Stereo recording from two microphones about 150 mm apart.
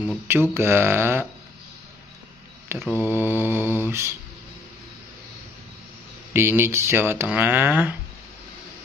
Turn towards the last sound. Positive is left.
turn(degrees=-15)  # may be behind; listen again after turning